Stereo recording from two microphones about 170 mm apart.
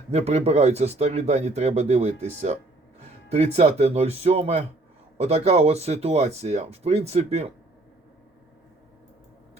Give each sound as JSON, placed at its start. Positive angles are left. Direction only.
{"t": 0.1, "sound": "speech", "side_deg": -40}